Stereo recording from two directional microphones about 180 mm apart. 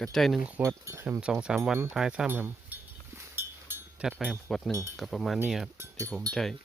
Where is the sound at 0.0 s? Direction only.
Centre (ahead or behind).